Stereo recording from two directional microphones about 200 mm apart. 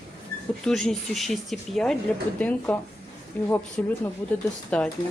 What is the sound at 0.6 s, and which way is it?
Speech, 5° left (ahead or behind).